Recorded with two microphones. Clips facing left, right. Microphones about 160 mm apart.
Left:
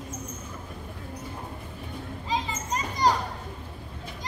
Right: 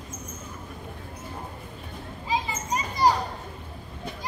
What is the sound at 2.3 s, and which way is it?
Children playing, 10° right (ahead or behind).